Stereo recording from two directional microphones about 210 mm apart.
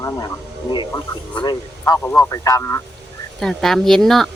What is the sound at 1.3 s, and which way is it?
A man's voice, 20° left (ahead or behind).